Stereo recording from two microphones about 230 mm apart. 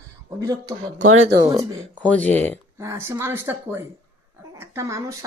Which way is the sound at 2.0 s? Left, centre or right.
Centre.